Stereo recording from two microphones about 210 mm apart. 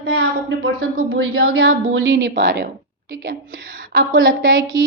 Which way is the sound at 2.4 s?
55° right (ahead or behind).